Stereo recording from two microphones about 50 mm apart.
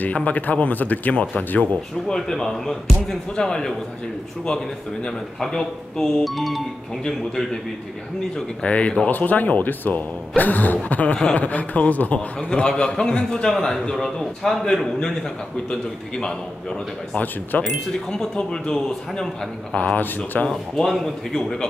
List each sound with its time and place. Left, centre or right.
0.0 s speech: left
2.1 s speech: centre
8.6 s a man's voice: left
9.0 s a man's voice: left
12.4 s speech: centre
17.2 s speech: left
17.6 s a man's voice: centre
20.4 s speech: centre